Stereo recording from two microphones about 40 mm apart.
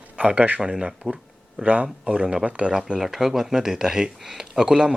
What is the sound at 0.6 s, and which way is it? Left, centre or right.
Speech, centre.